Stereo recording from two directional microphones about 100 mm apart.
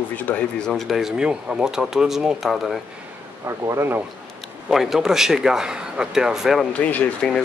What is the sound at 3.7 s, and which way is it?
Speech, 25° right (ahead or behind).